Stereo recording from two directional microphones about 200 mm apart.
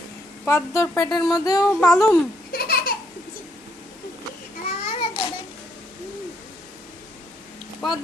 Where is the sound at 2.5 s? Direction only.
50° left (ahead or behind).